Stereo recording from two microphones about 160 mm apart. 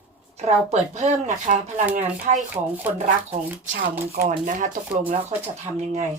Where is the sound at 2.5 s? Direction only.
10° right (ahead or behind).